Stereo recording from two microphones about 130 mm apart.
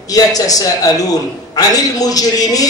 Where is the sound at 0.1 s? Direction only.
30° left (ahead or behind).